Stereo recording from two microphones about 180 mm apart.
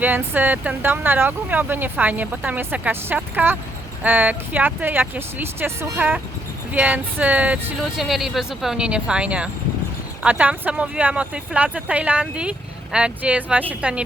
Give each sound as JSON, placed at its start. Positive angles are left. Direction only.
{"t": 0.0, "sound": "speech", "side_deg": -10}